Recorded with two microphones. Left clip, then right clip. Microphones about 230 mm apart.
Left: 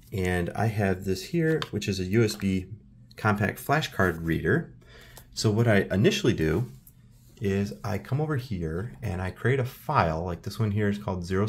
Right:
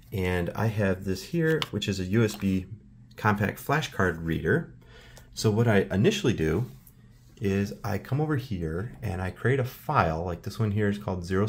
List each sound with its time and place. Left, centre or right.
0.1 s speech: centre